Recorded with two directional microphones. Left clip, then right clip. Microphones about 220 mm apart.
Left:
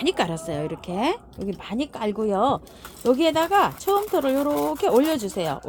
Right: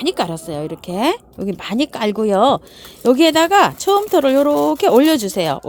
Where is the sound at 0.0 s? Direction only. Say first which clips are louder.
Right 4 dB; 25° right (ahead or behind).